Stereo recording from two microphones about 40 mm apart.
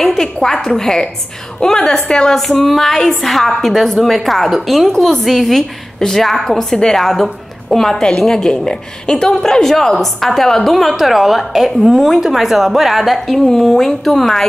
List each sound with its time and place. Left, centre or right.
0.0 s a woman's voice: centre